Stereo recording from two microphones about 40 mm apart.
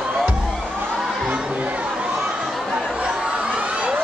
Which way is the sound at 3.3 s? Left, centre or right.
Right.